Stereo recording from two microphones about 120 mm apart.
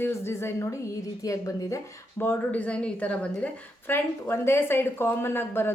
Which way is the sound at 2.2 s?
15° left (ahead or behind).